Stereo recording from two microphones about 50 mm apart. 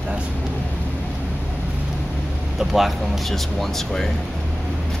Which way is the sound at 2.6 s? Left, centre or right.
Centre.